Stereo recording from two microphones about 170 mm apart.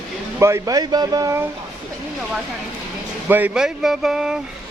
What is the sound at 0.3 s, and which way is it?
Speech, 15° right (ahead or behind).